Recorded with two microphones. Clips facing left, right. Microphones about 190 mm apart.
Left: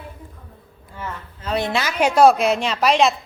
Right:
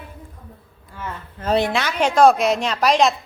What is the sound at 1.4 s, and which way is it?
Speech, 60° right (ahead or behind).